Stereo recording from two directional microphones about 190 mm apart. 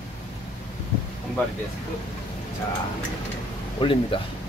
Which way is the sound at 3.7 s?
25° left (ahead or behind).